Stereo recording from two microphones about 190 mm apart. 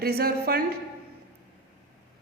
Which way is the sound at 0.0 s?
55° right (ahead or behind).